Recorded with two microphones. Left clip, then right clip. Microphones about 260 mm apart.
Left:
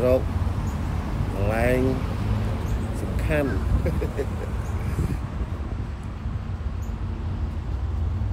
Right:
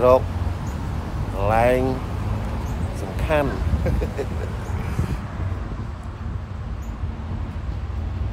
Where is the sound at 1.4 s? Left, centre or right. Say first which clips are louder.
Right 6 dB; centre.